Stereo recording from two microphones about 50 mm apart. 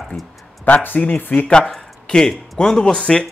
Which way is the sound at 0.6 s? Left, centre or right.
Left.